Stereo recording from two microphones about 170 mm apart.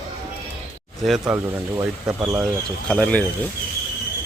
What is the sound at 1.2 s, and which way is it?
Speech, 15° right (ahead or behind).